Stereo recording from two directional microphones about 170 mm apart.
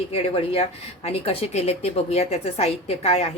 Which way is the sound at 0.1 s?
35° left (ahead or behind).